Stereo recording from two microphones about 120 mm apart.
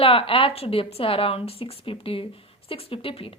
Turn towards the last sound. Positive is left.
turn(degrees=50)  # may be behind; listen again after turning